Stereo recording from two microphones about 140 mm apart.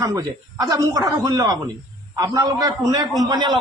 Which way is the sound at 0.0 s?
25° right (ahead or behind).